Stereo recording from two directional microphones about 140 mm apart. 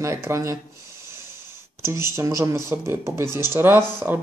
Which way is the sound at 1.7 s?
20° right (ahead or behind).